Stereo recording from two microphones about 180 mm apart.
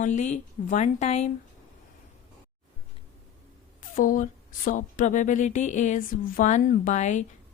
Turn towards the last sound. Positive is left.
turn(degrees=40)  # may be behind; listen again after turning